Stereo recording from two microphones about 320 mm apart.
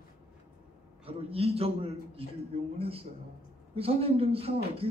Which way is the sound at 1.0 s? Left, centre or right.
Centre.